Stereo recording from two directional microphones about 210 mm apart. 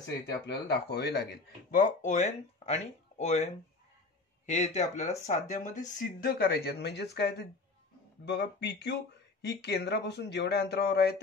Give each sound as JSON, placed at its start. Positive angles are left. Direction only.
{"t": 0.5, "sound": "speech", "side_deg": 50}
{"t": 4.5, "sound": "speech", "side_deg": 35}